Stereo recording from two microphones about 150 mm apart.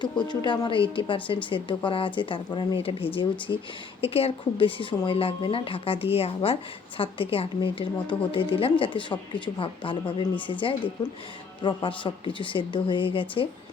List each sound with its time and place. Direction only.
0.0 s a woman's voice: 30° left (ahead or behind)